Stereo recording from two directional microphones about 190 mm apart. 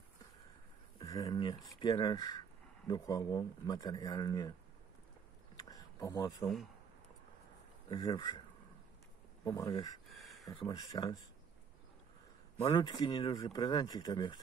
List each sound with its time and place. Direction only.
0.9 s speech: 20° left (ahead or behind)
5.7 s a sound: 20° left (ahead or behind)
7.9 s speech: 25° left (ahead or behind)
10.0 s a sound: centre (ahead or behind)
10.5 s speech: 25° left (ahead or behind)
12.7 s speech: 25° left (ahead or behind)